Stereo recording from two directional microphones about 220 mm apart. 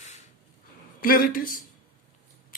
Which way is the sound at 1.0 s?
40° left (ahead or behind).